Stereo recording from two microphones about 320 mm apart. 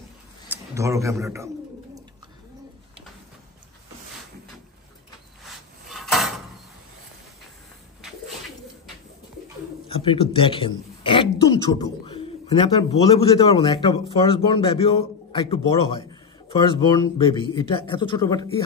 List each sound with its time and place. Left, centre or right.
0.5 s a man's voice: centre
5.4 s a sound: centre
9.8 s a man's voice: centre